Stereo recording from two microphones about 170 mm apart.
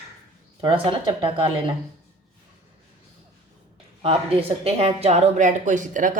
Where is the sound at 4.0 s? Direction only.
35° right (ahead or behind).